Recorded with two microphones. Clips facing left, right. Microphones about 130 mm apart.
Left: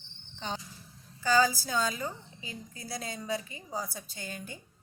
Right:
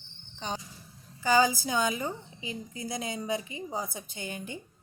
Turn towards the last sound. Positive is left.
turn(degrees=-20)  # may be behind; listen again after turning